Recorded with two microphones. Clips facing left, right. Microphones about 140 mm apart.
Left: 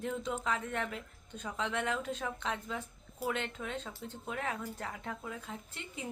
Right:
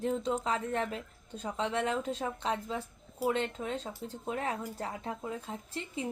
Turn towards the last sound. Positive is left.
turn(degrees=-30)  # may be behind; listen again after turning